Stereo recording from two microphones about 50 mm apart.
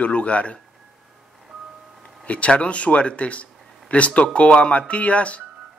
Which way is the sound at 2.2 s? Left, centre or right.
Left.